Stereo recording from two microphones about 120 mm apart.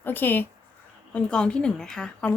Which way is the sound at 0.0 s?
15° left (ahead or behind).